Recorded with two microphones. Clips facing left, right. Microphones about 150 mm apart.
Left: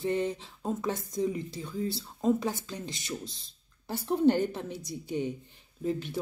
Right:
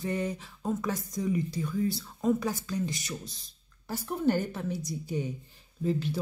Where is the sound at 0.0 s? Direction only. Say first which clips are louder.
Left 2 dB; 25° left (ahead or behind).